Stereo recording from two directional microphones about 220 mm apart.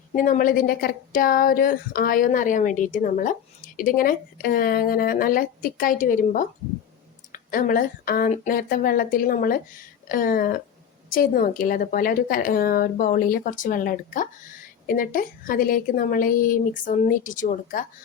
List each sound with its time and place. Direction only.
0.2 s a woman's voice: 40° left (ahead or behind)